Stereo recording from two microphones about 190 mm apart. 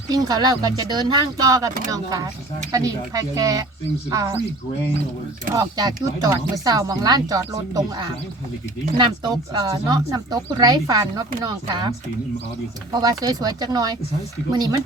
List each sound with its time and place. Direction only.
0.1 s speech: 20° right (ahead or behind)
5.5 s speech: 20° right (ahead or behind)